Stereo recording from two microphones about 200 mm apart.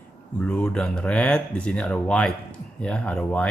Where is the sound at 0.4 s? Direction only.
5° left (ahead or behind).